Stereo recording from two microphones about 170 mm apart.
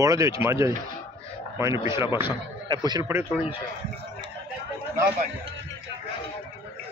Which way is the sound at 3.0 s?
15° right (ahead or behind).